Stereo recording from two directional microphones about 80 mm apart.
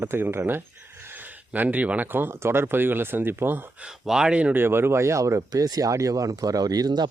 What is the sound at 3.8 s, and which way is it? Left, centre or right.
Speech, centre.